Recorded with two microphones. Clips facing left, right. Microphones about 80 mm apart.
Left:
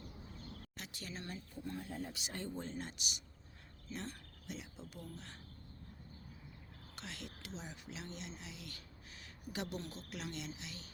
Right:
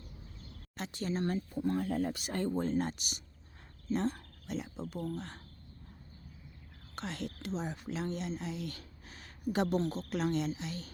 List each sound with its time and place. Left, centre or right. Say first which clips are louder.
0.8 s speech: right 14 dB; right
1.5 s speech: right 10 dB; right
2.1 s speech: right 10 dB; right
6.9 s speech: right 10 dB; right